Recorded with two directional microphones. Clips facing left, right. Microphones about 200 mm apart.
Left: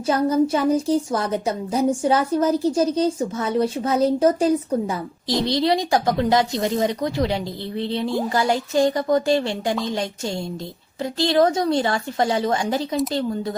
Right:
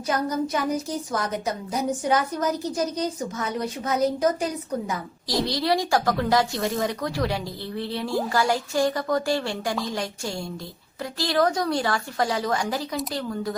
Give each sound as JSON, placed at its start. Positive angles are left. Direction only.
{"t": 0.1, "sound": "a woman's voice", "side_deg": 30}